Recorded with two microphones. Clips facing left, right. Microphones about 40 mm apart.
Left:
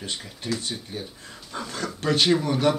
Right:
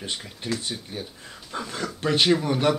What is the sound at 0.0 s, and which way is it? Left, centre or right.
Speech, centre.